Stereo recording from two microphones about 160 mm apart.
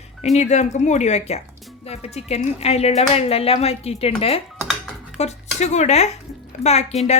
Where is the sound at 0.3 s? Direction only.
45° left (ahead or behind).